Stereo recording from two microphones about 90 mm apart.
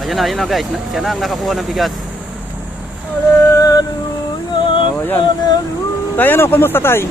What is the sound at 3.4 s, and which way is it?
Music, 40° left (ahead or behind).